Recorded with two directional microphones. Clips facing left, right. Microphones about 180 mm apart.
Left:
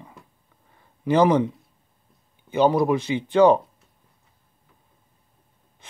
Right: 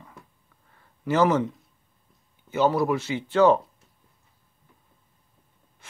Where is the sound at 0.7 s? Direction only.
15° left (ahead or behind).